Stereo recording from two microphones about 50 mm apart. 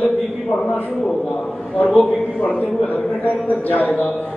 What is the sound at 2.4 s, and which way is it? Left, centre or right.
A man's voice, left.